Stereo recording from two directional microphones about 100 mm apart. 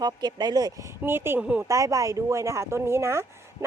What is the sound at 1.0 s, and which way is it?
Speech, 25° right (ahead or behind).